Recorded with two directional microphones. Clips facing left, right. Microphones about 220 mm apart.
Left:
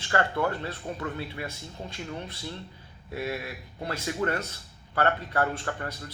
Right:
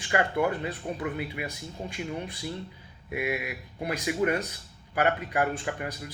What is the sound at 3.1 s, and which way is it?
A man's voice, 15° right (ahead or behind).